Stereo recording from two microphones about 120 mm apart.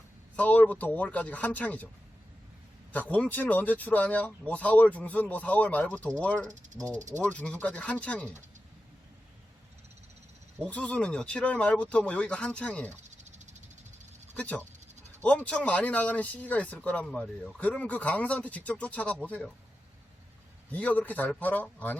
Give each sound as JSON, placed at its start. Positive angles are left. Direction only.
{"t": 0.3, "sound": "speech", "side_deg": 10}
{"t": 2.9, "sound": "speech", "side_deg": 10}
{"t": 10.6, "sound": "speech", "side_deg": 10}
{"t": 13.0, "sound": "snake", "side_deg": -85}
{"t": 14.3, "sound": "speech", "side_deg": 10}
{"t": 20.7, "sound": "speech", "side_deg": 15}